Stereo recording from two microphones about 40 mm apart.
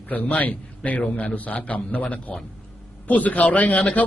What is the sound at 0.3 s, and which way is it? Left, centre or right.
A man's voice, left.